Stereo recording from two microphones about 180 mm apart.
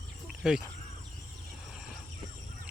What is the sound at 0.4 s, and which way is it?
Speech, 5° right (ahead or behind).